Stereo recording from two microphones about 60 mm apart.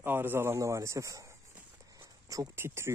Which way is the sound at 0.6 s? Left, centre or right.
Right.